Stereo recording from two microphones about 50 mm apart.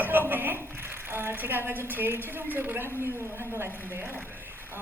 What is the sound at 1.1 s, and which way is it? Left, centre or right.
A woman's voice, right.